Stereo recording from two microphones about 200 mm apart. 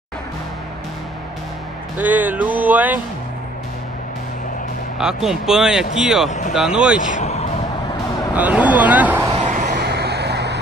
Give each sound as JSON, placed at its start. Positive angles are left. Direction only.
{"t": 2.0, "sound": "speech", "side_deg": -10}
{"t": 4.9, "sound": "speech", "side_deg": 0}
{"t": 7.0, "sound": "speech", "side_deg": 40}
{"t": 8.4, "sound": "speech", "side_deg": -10}
{"t": 9.3, "sound": "a sound", "side_deg": -40}
{"t": 9.8, "sound": "vehicle", "side_deg": -55}